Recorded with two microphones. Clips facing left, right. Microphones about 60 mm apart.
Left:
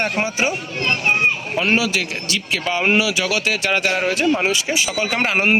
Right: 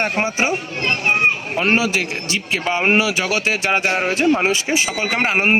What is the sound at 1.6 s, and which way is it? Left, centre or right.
Speech, right.